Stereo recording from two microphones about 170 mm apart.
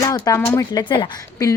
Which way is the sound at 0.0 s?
20° left (ahead or behind).